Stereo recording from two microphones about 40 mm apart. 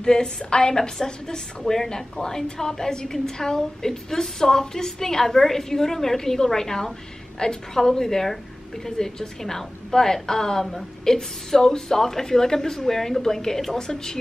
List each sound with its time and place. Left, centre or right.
0.0 s a woman's voice: centre